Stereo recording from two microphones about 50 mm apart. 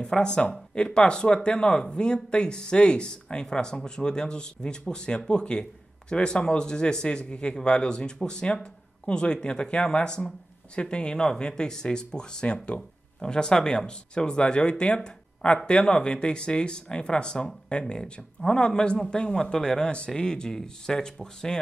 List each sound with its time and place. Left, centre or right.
0.0 s a man's voice: centre